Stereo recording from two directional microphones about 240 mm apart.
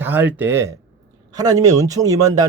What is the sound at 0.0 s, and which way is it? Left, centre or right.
A man's voice, centre.